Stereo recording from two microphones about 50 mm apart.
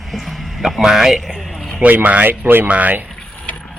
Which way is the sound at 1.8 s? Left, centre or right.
Right.